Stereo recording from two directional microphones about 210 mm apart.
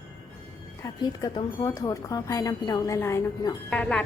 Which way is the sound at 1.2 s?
20° left (ahead or behind).